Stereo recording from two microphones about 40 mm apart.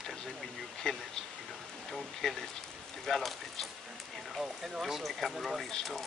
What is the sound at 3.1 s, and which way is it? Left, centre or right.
Speech, centre.